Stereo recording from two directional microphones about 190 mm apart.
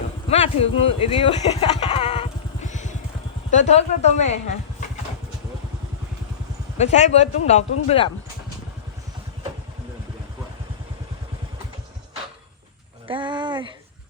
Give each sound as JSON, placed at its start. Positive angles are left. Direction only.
{"t": 0.3, "sound": "speech", "side_deg": 30}
{"t": 6.7, "sound": "speech", "side_deg": 35}
{"t": 13.1, "sound": "a sound", "side_deg": -25}